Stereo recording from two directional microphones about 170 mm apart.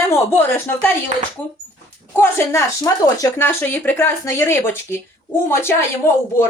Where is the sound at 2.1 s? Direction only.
15° left (ahead or behind).